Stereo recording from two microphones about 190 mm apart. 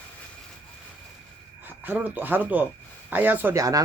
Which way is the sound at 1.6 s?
10° right (ahead or behind).